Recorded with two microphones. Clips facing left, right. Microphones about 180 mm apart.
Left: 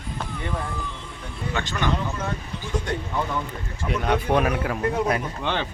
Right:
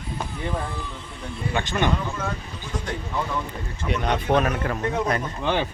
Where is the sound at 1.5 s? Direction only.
15° right (ahead or behind).